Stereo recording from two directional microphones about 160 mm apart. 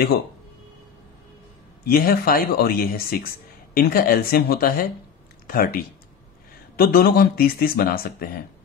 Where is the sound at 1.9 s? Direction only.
70° left (ahead or behind).